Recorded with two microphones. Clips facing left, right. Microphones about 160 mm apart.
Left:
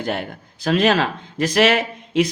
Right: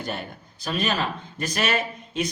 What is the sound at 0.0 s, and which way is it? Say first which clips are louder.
Speech: left 7 dB; 90° left.